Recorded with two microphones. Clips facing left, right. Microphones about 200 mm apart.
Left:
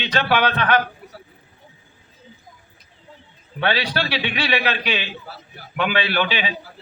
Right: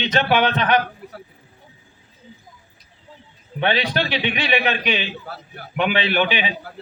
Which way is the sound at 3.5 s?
20° right (ahead or behind).